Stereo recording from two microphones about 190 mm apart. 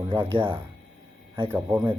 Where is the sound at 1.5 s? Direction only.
10° right (ahead or behind).